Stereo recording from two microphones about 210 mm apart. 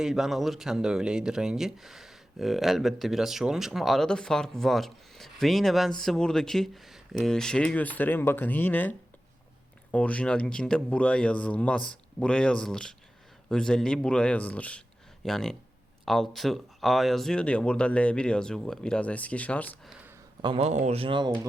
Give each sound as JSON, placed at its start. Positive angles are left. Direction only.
{"t": 0.0, "sound": "speech", "side_deg": 0}
{"t": 20.4, "sound": "speech", "side_deg": -25}